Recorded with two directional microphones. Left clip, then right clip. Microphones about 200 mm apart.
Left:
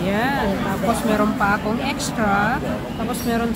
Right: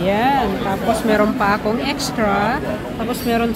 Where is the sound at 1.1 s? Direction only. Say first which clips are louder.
Right 4 dB; 20° right (ahead or behind).